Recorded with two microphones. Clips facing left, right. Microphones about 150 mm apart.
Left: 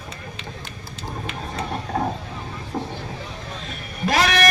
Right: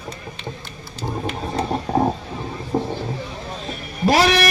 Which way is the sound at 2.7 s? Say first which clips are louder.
Right 6 dB; 30° right (ahead or behind).